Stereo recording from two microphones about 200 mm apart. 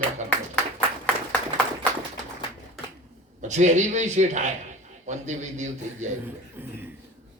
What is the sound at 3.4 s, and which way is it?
Speech, 35° right (ahead or behind).